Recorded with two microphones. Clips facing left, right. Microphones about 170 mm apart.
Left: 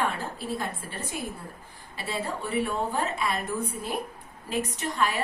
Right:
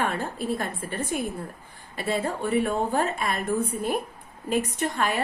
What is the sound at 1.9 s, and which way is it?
A woman's voice, 55° right (ahead or behind).